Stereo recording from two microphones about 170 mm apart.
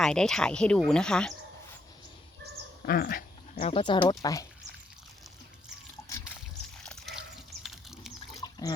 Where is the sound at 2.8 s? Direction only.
60° left (ahead or behind).